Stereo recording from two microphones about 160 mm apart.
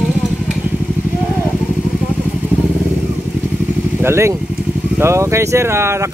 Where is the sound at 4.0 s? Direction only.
15° right (ahead or behind).